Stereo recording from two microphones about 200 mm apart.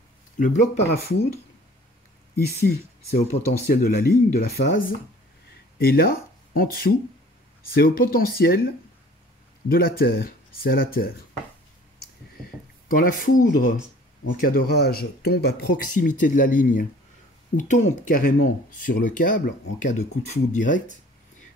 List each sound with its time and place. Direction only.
0.4 s speech: 35° left (ahead or behind)
2.3 s speech: 50° left (ahead or behind)
5.8 s speech: 50° left (ahead or behind)
9.7 s speech: 50° left (ahead or behind)
12.8 s speech: 45° left (ahead or behind)